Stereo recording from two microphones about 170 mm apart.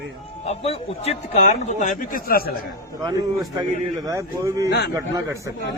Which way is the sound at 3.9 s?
20° right (ahead or behind).